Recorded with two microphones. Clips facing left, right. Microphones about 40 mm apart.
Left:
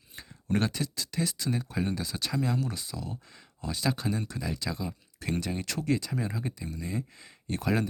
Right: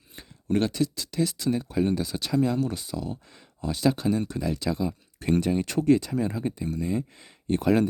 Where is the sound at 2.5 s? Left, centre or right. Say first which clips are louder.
Right 5 dB; right.